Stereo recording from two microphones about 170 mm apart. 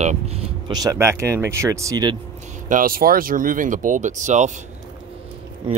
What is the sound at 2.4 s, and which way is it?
Speech, 50° right (ahead or behind).